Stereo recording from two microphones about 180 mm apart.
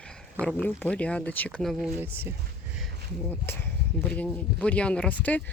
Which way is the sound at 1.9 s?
10° right (ahead or behind).